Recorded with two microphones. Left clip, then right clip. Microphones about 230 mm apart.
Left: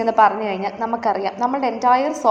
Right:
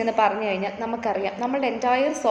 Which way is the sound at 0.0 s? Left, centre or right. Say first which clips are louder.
Left 6 dB; centre.